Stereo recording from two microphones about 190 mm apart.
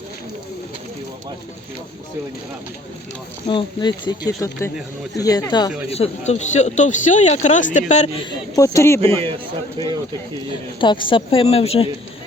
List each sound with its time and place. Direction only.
3.4 s speech: 25° left (ahead or behind)
8.5 s speech: 15° left (ahead or behind)
9.2 s speech: 25° right (ahead or behind)
10.8 s speech: 25° left (ahead or behind)